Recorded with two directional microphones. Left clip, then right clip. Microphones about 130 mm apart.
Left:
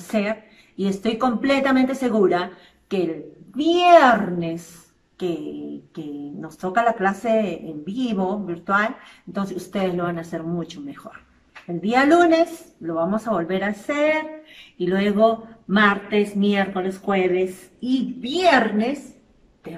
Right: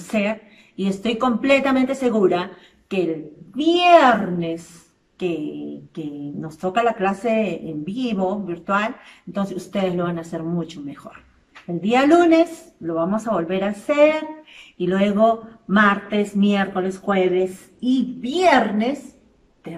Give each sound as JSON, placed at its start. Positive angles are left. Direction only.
{"t": 0.1, "sound": "a woman's voice", "side_deg": -5}
{"t": 5.9, "sound": "a woman's voice", "side_deg": -10}